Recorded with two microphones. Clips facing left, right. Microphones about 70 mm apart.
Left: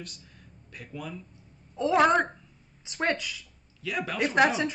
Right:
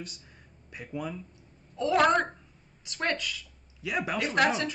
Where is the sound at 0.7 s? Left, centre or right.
Centre.